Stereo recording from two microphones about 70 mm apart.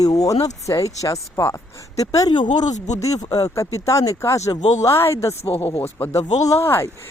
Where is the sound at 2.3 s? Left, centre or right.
Left.